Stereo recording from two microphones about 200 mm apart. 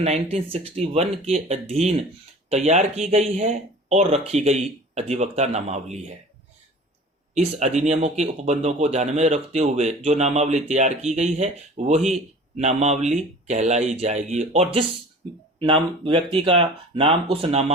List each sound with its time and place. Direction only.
0.0 s speech: 30° right (ahead or behind)
7.3 s speech: 35° right (ahead or behind)